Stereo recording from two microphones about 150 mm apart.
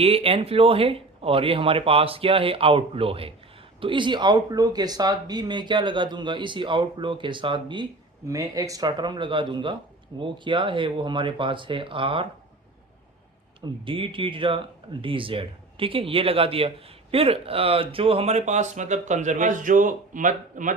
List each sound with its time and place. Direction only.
0.0 s speech: 40° right (ahead or behind)
13.8 s speech: 35° right (ahead or behind); by 20.7 s 60° right (ahead or behind)